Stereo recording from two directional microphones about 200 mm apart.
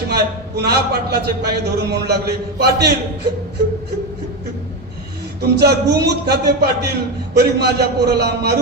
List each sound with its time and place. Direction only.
0.1 s a man's voice: 55° right (ahead or behind)
5.4 s a man's voice: 55° right (ahead or behind)